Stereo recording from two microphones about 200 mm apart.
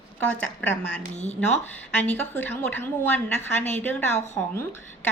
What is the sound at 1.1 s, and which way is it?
Speech, 35° left (ahead or behind).